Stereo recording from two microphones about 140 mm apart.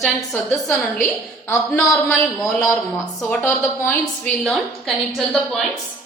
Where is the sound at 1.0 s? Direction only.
20° left (ahead or behind).